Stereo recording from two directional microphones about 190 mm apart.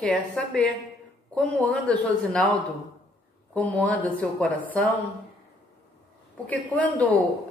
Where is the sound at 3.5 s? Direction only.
5° left (ahead or behind).